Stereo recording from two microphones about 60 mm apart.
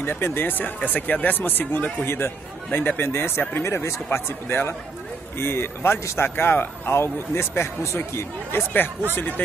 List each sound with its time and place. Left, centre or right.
0.0 s speech: left
3.6 s speech: left